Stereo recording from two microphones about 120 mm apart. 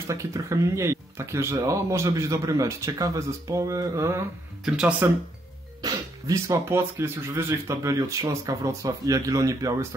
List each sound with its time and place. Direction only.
0.1 s speech: 25° right (ahead or behind)
4.6 s speech: 10° right (ahead or behind)
5.8 s speech: 30° right (ahead or behind)